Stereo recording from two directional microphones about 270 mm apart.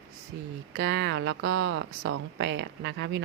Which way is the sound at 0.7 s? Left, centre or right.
Right.